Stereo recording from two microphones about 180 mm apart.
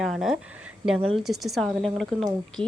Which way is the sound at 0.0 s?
Centre (ahead or behind).